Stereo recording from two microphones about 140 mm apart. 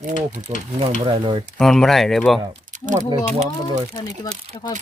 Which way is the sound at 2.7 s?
65° right (ahead or behind).